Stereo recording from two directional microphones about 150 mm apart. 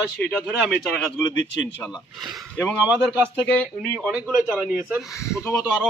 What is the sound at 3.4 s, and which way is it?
Speech, 5° left (ahead or behind).